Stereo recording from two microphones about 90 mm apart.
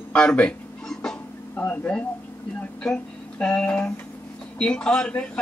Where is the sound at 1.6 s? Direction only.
15° left (ahead or behind).